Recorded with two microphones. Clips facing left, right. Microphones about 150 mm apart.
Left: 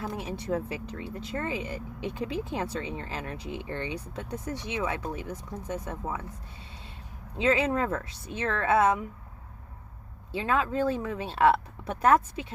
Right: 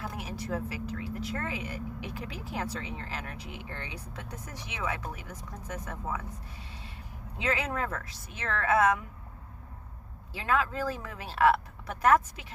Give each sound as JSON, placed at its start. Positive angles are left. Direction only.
{"t": 0.0, "sound": "speech", "side_deg": 30}
{"t": 7.3, "sound": "speech", "side_deg": 30}
{"t": 10.3, "sound": "speech", "side_deg": 25}